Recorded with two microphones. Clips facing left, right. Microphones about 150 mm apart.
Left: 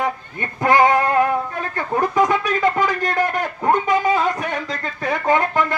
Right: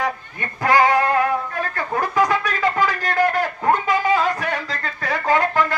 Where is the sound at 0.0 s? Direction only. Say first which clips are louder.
Left 1 dB; 20° left (ahead or behind).